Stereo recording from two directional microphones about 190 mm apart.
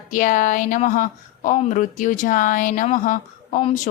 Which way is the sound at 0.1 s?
45° left (ahead or behind).